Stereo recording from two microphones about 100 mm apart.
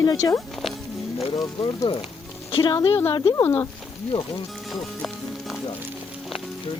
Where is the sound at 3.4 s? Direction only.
20° left (ahead or behind).